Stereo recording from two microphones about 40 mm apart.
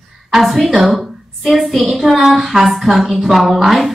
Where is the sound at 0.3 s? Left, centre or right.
Centre.